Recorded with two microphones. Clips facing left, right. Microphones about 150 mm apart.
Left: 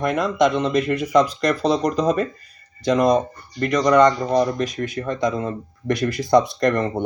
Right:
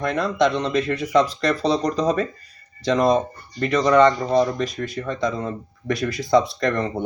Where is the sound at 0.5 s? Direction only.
Centre (ahead or behind).